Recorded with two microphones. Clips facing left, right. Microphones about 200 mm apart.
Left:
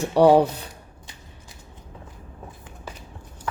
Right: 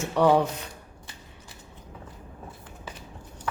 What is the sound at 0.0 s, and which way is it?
Speech, 35° left (ahead or behind).